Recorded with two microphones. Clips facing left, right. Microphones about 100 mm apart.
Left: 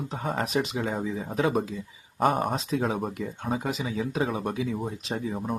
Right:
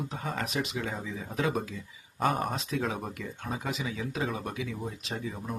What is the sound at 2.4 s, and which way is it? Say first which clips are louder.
Speech: left 4 dB; 30° left (ahead or behind).